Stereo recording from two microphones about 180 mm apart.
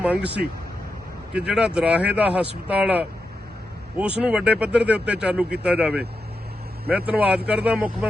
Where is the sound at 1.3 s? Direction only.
5° right (ahead or behind).